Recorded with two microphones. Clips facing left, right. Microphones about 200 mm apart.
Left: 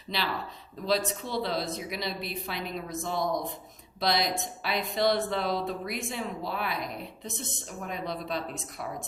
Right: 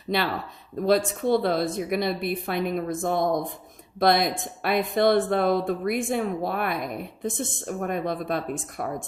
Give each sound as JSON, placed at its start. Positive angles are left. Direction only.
{"t": 0.1, "sound": "speech", "side_deg": -55}